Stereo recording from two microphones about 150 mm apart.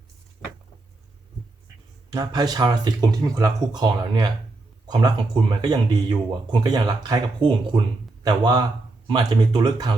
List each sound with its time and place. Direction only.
2.1 s speech: 25° right (ahead or behind)